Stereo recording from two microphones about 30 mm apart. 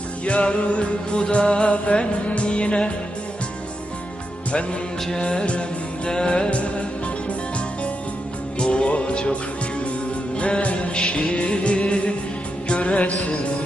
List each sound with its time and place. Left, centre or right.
0.3 s music: left
5.1 s music: left
6.5 s music: left
8.5 s music: left
10.4 s music: left